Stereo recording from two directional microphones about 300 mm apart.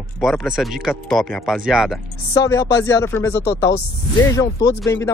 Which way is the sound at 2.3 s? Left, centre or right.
Centre.